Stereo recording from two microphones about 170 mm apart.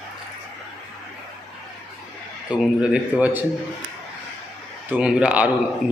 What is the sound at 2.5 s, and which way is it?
Speech, 5° right (ahead or behind).